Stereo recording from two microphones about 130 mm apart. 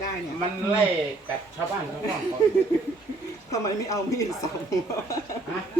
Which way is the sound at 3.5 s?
25° left (ahead or behind).